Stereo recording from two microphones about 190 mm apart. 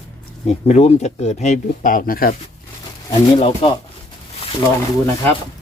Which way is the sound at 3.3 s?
30° left (ahead or behind).